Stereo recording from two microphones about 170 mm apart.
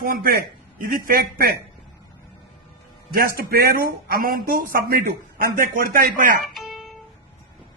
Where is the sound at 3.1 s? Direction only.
60° right (ahead or behind).